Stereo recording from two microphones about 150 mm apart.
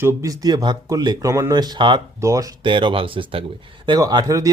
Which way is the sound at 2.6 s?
35° right (ahead or behind).